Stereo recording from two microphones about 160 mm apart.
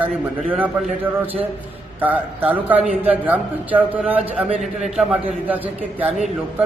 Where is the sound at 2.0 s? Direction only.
10° right (ahead or behind).